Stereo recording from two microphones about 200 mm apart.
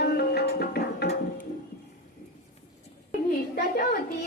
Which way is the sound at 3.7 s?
45° left (ahead or behind).